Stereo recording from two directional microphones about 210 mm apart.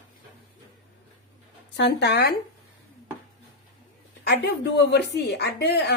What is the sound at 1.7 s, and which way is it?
Speech, 55° left (ahead or behind).